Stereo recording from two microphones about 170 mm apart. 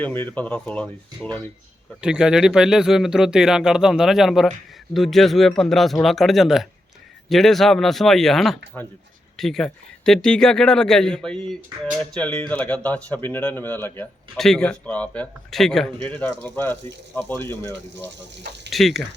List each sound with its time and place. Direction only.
0.0 s speech: 10° left (ahead or behind)
2.0 s speech: 5° right (ahead or behind)
11.7 s speech: 25° right (ahead or behind)
12.1 s speech: 5° left (ahead or behind)
18.7 s speech: centre (ahead or behind)